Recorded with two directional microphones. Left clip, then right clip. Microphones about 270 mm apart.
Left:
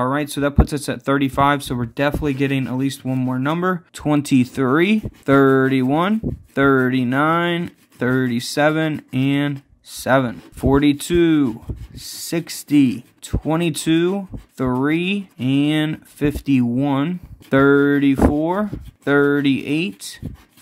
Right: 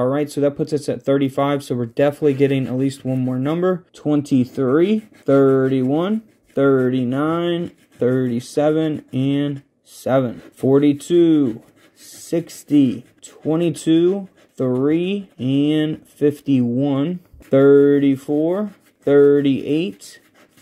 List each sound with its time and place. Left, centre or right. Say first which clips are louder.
0.0 s speech: right 2 dB; centre
9.9 s speech: left 1 dB; centre
15.3 s speech: even; left
15.6 s speech: right 3 dB; centre